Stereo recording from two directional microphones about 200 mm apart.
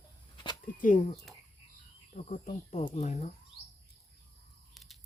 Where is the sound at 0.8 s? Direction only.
40° left (ahead or behind).